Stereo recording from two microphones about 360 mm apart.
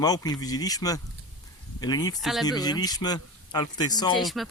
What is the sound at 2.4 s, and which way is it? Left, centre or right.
Speech, centre.